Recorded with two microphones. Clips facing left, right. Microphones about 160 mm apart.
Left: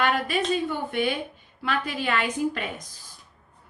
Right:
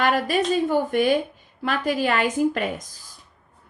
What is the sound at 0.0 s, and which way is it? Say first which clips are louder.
A woman's voice: right 3 dB; 40° right (ahead or behind).